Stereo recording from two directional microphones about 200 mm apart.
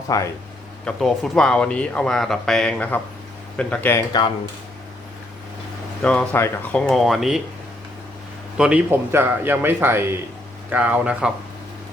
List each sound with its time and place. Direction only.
0.1 s speech: 15° left (ahead or behind)
0.9 s speech: centre (ahead or behind)
6.0 s speech: 5° left (ahead or behind)
8.5 s a man's voice: 5° right (ahead or behind)